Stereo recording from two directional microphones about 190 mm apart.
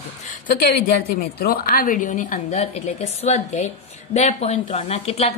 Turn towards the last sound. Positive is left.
turn(degrees=35)  # may be behind; listen again after turning